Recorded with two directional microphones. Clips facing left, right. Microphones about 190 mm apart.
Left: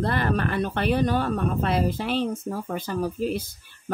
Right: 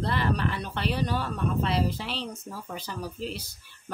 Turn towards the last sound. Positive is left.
turn(degrees=50)  # may be behind; listen again after turning